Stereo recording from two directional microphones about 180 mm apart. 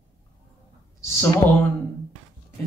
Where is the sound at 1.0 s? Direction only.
15° left (ahead or behind).